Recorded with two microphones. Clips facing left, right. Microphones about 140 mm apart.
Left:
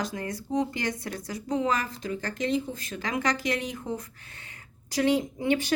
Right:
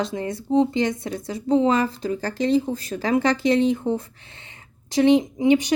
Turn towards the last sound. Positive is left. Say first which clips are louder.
# right 8 dB
turn(degrees=-15)  # may be behind; listen again after turning